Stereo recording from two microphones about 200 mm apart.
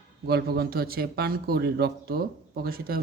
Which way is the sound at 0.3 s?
50° right (ahead or behind).